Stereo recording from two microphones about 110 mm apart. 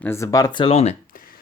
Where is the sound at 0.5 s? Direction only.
50° left (ahead or behind).